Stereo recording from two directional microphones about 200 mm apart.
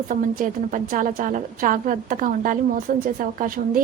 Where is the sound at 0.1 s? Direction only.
40° right (ahead or behind).